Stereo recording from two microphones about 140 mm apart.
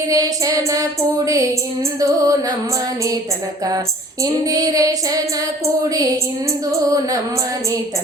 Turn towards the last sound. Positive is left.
turn(degrees=-25)  # may be behind; listen again after turning